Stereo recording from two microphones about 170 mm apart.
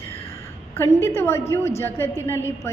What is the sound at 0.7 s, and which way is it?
A woman's voice, 15° left (ahead or behind).